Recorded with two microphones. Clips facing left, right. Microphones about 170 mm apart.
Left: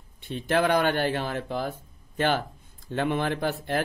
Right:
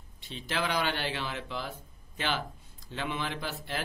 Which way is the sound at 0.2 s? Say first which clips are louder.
Left 9 dB; 55° left (ahead or behind).